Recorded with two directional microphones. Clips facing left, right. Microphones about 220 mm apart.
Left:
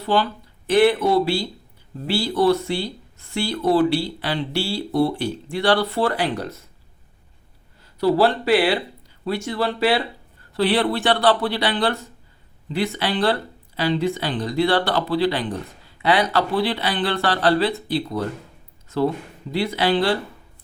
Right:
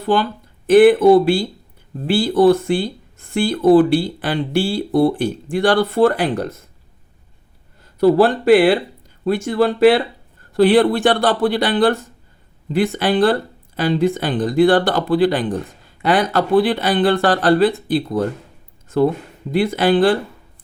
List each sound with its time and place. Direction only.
0.7 s speech: 50° right (ahead or behind)
7.9 s speech: 50° right (ahead or behind)
19.5 s speech: 50° right (ahead or behind)